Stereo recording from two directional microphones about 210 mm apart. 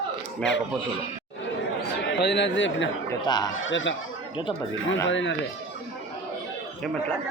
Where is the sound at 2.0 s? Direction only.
55° left (ahead or behind).